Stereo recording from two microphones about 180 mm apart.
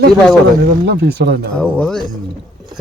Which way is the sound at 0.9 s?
65° right (ahead or behind).